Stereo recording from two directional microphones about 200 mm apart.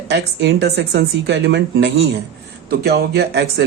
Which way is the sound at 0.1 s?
60° right (ahead or behind).